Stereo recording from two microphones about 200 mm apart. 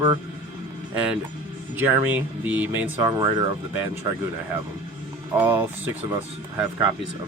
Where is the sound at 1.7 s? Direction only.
10° right (ahead or behind).